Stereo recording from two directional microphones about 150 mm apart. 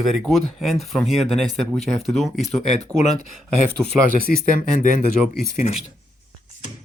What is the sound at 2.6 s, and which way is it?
Speech, 50° left (ahead or behind).